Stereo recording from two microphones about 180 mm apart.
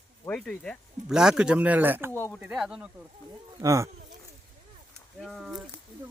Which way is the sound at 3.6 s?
15° right (ahead or behind).